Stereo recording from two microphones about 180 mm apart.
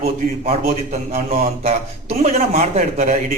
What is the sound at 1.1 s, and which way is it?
A man's voice, 35° right (ahead or behind).